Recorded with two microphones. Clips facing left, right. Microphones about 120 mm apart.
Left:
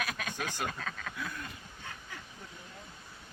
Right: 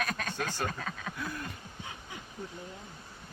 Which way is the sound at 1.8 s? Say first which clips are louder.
Right 2 dB; 15° right (ahead or behind).